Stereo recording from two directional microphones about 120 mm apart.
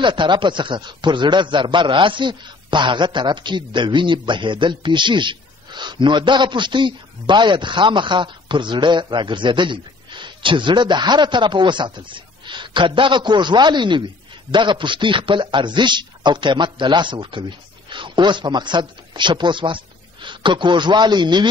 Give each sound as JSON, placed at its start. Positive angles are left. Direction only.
{"t": 0.0, "sound": "a man's voice", "side_deg": -40}